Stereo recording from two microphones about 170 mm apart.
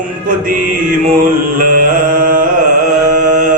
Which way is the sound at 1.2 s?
55° right (ahead or behind).